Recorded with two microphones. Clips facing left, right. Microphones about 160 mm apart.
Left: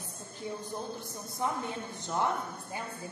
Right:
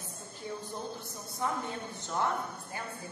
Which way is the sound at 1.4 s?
20° left (ahead or behind).